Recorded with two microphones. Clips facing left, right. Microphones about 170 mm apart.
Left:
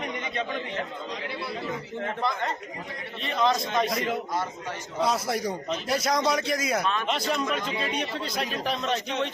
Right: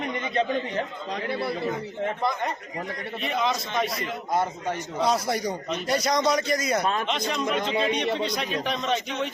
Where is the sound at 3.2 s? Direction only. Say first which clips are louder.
Left 2 dB; centre (ahead or behind).